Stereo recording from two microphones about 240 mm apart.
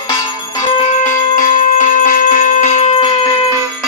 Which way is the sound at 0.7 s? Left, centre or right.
Left.